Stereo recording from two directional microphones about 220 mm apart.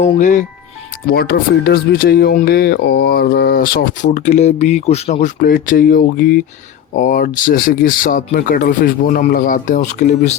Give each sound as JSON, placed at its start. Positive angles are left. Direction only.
{"t": 0.0, "sound": "speech", "side_deg": 35}
{"t": 1.0, "sound": "speech", "side_deg": 45}